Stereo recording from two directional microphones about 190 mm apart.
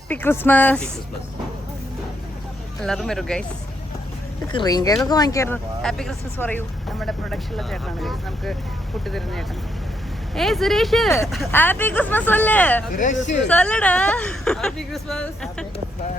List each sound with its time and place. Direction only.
0.1 s speech: 10° left (ahead or behind)
2.8 s speech: centre (ahead or behind)
4.5 s speech: 20° left (ahead or behind)
5.8 s speech: centre (ahead or behind)
12.9 s speech: 45° left (ahead or behind)
13.5 s speech: 5° left (ahead or behind)